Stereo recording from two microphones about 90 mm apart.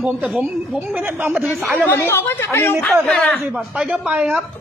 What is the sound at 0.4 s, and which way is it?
Speech, 20° right (ahead or behind).